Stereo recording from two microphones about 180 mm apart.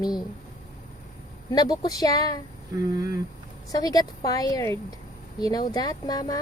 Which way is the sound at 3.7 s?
20° left (ahead or behind).